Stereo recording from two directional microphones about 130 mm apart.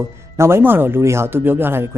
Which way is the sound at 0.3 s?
20° right (ahead or behind).